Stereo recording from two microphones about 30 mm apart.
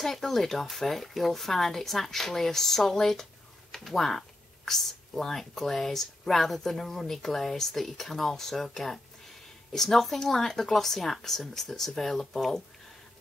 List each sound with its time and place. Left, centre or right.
0.0 s a woman's voice: centre